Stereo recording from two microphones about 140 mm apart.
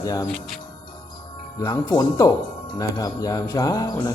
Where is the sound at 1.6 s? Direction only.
30° left (ahead or behind).